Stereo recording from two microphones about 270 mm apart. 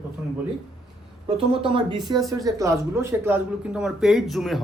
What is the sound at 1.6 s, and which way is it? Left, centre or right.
Speech, centre.